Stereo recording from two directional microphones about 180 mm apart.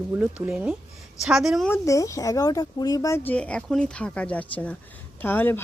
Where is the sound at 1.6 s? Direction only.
15° left (ahead or behind).